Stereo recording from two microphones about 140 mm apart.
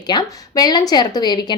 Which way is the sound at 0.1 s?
30° left (ahead or behind).